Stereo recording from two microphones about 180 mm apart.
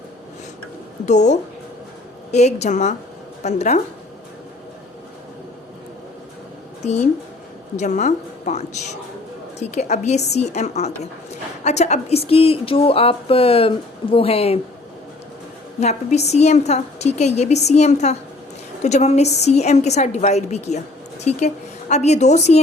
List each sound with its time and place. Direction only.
1.0 s a woman's voice: 40° left (ahead or behind)
6.8 s a woman's voice: 40° left (ahead or behind)
15.8 s a woman's voice: 40° left (ahead or behind)